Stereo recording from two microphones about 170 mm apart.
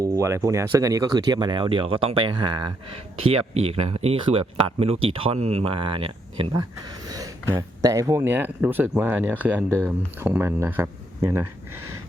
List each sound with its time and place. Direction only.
0.0 s speech: 20° right (ahead or behind)